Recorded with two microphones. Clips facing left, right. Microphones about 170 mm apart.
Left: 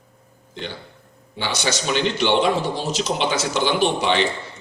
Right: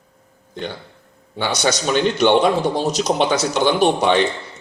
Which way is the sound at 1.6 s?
45° right (ahead or behind).